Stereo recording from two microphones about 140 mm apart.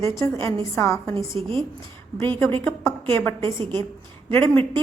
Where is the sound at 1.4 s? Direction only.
45° right (ahead or behind).